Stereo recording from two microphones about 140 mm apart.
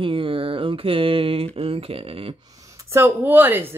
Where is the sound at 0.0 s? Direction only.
40° right (ahead or behind).